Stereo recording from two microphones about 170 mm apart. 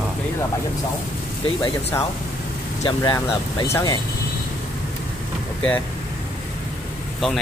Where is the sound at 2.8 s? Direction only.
20° left (ahead or behind).